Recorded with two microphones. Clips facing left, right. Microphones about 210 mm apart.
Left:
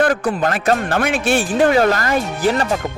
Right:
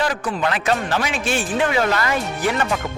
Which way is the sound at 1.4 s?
40° left (ahead or behind).